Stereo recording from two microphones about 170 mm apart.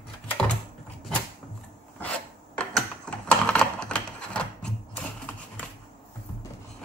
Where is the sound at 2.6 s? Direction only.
5° left (ahead or behind).